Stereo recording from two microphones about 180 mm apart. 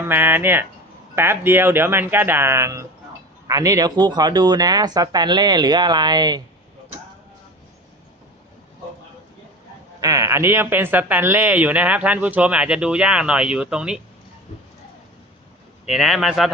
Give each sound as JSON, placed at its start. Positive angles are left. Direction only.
{"t": 0.0, "sound": "speech", "side_deg": -10}
{"t": 10.0, "sound": "speech", "side_deg": -20}
{"t": 15.9, "sound": "speech", "side_deg": 0}